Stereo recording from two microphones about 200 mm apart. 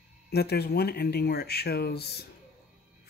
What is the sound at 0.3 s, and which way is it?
Speech, 55° left (ahead or behind).